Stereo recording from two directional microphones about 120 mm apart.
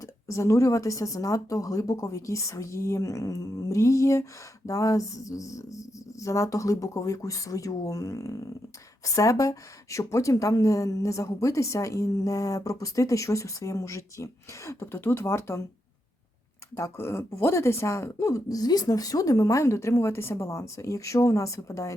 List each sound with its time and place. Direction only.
0.0 s speech: 25° left (ahead or behind)
16.7 s speech: 25° left (ahead or behind)